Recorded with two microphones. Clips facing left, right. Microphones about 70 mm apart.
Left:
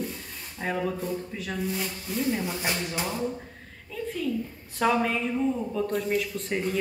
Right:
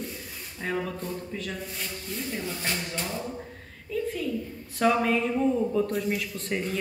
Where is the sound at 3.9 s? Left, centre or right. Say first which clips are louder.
Right 2 dB; centre.